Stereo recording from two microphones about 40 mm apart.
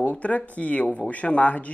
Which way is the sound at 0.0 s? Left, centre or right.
Left.